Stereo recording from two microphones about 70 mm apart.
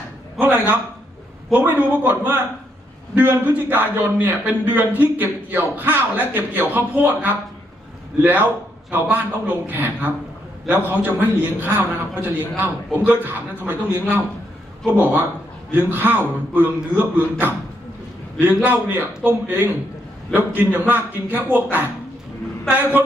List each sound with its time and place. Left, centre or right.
0.3 s a man's voice: right